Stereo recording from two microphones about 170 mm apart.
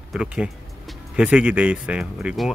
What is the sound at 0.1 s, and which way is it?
Speech, 5° right (ahead or behind).